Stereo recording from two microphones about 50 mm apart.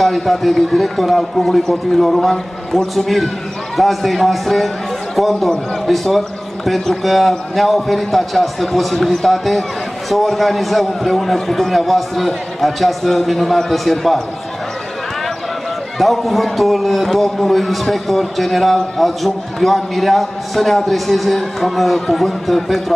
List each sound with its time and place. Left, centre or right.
0.0 s a man's voice: centre
16.0 s a man's voice: centre